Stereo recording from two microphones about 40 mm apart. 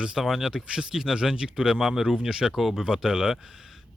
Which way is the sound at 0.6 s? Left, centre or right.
Centre.